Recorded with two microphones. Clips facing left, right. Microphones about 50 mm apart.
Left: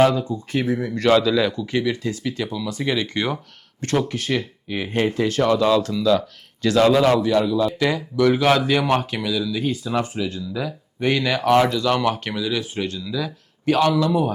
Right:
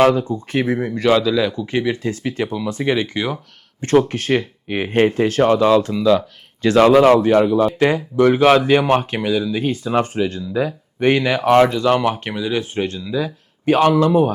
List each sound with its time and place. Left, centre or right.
0.1 s speech: right
0.9 s speech: centre
1.5 s speech: right
3.2 s speech: centre
3.8 s speech: right
6.7 s speech: right
11.2 s speech: right